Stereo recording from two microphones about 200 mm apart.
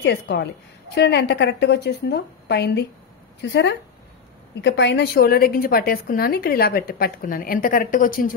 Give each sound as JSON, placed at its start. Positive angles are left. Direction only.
{"t": 0.0, "sound": "a woman's voice", "side_deg": 60}